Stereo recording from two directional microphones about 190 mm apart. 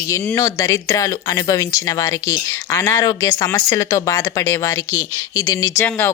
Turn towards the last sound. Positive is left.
turn(degrees=10)  # may be behind; listen again after turning